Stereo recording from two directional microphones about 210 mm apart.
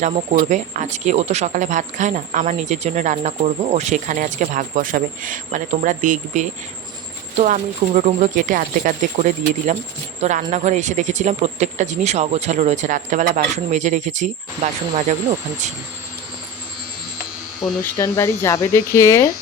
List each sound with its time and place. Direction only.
0.0 s a man's voice: 35° right (ahead or behind)
17.9 s speech: 15° left (ahead or behind)